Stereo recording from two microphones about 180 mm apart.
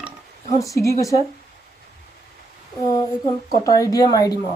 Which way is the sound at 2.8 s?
20° left (ahead or behind).